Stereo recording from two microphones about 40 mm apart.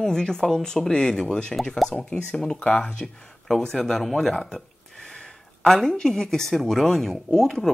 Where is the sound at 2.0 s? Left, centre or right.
Left.